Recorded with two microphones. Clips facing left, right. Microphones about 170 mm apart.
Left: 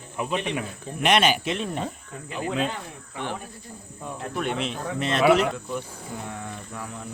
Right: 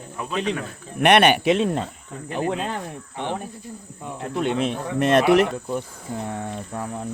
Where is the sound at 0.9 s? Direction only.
60° right (ahead or behind); by 1.8 s 90° right.